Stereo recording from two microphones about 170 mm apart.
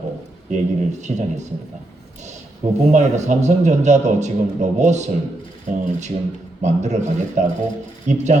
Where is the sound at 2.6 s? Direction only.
50° right (ahead or behind).